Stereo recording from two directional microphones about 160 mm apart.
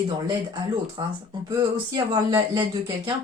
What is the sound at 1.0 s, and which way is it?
Speech, 25° right (ahead or behind).